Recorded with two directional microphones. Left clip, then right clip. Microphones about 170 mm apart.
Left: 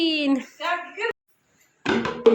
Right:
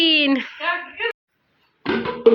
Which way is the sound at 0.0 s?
15° left (ahead or behind).